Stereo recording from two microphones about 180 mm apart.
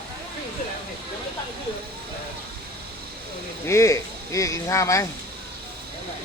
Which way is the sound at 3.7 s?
15° left (ahead or behind).